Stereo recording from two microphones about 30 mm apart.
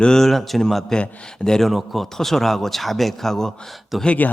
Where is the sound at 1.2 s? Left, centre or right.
Left.